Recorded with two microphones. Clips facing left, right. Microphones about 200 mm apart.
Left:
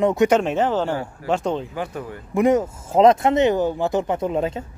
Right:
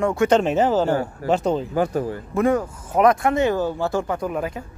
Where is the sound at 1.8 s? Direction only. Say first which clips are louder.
Right 7 dB; 35° right (ahead or behind).